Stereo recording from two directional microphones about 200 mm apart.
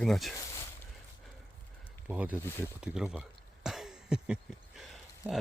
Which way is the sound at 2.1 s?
10° right (ahead or behind).